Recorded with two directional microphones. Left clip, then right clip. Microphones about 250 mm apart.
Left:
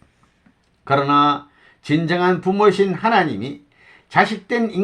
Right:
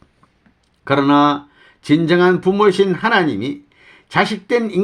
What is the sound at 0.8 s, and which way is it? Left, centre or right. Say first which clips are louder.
Speech: right 2 dB; right.